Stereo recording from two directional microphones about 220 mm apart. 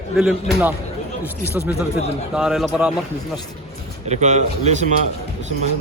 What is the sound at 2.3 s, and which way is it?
Speech, centre (ahead or behind).